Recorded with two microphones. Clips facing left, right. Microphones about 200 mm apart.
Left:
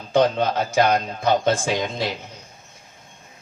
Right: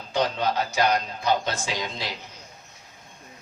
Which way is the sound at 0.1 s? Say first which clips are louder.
Left 6 dB; 50° left (ahead or behind).